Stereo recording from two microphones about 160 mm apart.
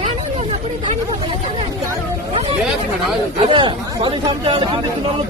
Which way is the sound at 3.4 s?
30° right (ahead or behind).